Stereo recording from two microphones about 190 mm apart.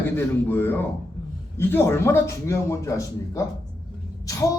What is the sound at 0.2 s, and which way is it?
A man's voice, 10° left (ahead or behind).